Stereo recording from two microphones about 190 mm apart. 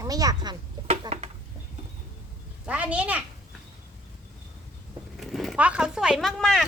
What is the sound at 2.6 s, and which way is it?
Speech, 5° right (ahead or behind).